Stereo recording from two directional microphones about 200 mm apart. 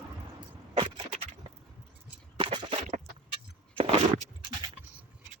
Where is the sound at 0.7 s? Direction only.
25° right (ahead or behind).